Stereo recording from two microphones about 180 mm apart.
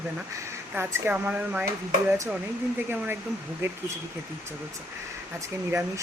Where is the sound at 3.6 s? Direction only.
15° right (ahead or behind).